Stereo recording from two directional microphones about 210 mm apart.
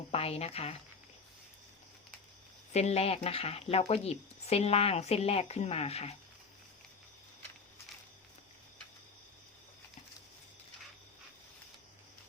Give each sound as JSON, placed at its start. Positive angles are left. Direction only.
{"t": 0.1, "sound": "speech", "side_deg": 30}
{"t": 2.7, "sound": "speech", "side_deg": 30}